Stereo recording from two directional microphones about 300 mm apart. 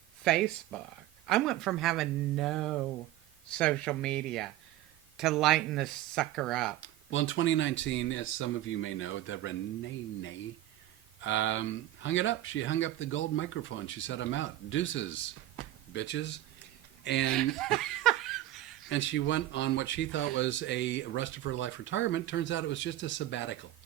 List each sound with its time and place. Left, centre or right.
0.3 s speech: centre
6.8 s speech: left
17.3 s laughter: centre
18.9 s speech: left